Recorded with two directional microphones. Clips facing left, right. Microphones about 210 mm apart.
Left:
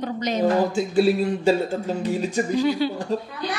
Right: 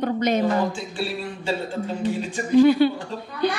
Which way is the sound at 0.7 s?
40° left (ahead or behind).